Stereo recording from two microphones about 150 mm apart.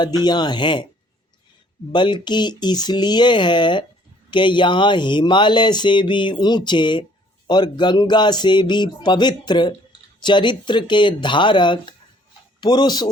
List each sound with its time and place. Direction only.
0.0 s speech: 30° left (ahead or behind)
1.9 s a man's voice: 30° left (ahead or behind)